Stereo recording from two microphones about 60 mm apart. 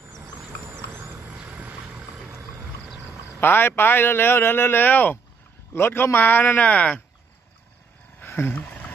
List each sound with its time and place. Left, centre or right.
0.7 s vehicle: right
1.4 s vehicle: right
1.8 s vehicle: centre
3.3 s a man's voice: left
5.7 s a man's voice: left
8.2 s a sound: left
8.5 s a sound: left